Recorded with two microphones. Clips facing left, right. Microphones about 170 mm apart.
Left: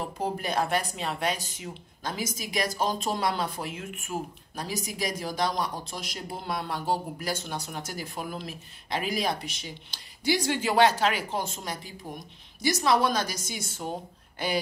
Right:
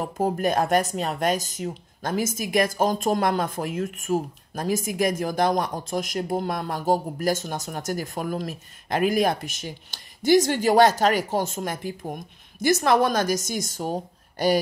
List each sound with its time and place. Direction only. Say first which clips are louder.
0.0 s speech: right 7 dB; 45° right (ahead or behind)